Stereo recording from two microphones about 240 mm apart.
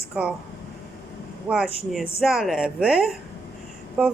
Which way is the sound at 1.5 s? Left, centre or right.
Centre.